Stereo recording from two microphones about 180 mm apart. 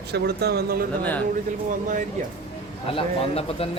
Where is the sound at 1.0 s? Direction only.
10° left (ahead or behind).